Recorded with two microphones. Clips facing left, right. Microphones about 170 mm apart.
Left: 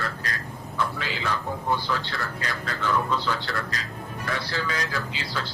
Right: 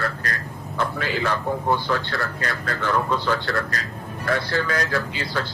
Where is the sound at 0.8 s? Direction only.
55° right (ahead or behind).